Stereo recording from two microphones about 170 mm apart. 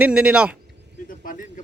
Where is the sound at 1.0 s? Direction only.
55° left (ahead or behind).